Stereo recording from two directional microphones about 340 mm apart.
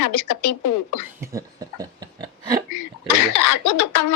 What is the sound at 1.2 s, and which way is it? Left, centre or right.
Speech, centre.